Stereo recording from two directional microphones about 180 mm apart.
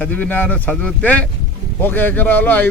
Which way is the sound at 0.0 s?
10° left (ahead or behind).